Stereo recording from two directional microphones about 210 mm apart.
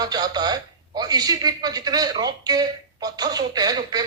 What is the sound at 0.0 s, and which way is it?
Speech, 20° right (ahead or behind).